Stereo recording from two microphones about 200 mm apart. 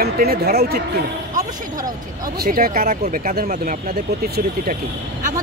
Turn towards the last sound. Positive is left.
turn(degrees=-40)  # may be behind; listen again after turning